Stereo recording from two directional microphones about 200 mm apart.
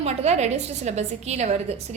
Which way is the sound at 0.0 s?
35° right (ahead or behind).